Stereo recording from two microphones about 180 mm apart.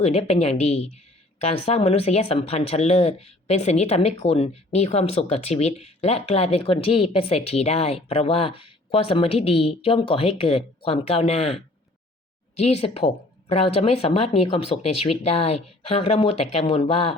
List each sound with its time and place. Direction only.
0.0 s speech: 35° left (ahead or behind)